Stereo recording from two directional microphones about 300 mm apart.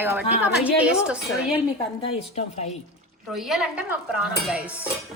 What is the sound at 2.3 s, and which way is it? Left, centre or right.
Speech, left.